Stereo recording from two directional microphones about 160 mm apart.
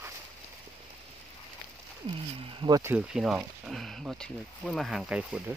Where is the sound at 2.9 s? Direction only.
5° right (ahead or behind).